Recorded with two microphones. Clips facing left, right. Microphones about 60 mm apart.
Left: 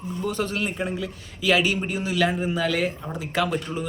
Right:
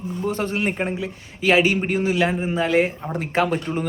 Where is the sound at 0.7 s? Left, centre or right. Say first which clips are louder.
Right 4 dB; right.